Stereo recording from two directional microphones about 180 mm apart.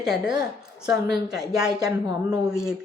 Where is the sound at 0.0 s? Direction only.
5° right (ahead or behind).